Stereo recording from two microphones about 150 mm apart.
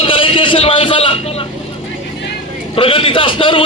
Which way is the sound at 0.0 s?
35° left (ahead or behind).